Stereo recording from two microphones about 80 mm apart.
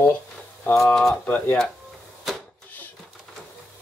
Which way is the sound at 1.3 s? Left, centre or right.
Left.